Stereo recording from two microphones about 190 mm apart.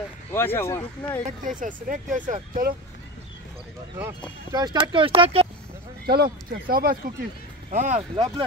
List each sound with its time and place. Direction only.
0.3 s speech: 10° left (ahead or behind)
1.4 s speech: 45° right (ahead or behind)
4.5 s speech: 20° right (ahead or behind)
6.0 s speech: 55° right (ahead or behind)
7.7 s speech: 40° right (ahead or behind)